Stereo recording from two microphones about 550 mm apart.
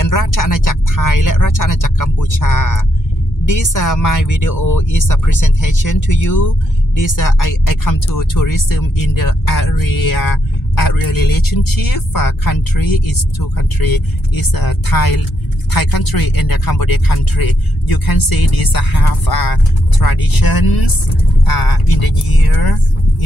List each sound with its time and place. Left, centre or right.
0.0 s speech: left